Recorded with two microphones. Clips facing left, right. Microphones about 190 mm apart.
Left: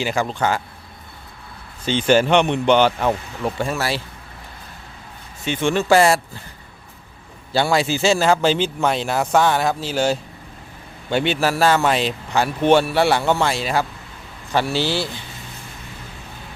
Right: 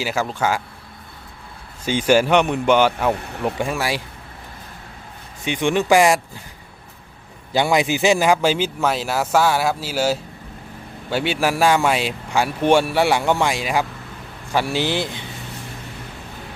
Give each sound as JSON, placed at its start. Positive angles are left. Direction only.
{"t": 0.0, "sound": "a man's voice", "side_deg": -5}
{"t": 1.8, "sound": "speech", "side_deg": -10}
{"t": 3.2, "sound": "speech", "side_deg": -60}
{"t": 3.4, "sound": "speech", "side_deg": -15}
{"t": 5.5, "sound": "speech", "side_deg": -15}
{"t": 7.5, "sound": "speech", "side_deg": -15}